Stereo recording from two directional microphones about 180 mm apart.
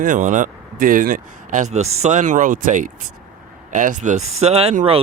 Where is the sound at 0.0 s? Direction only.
45° right (ahead or behind).